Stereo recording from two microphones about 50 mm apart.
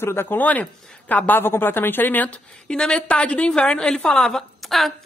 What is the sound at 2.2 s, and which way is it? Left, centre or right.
A woman's voice, centre.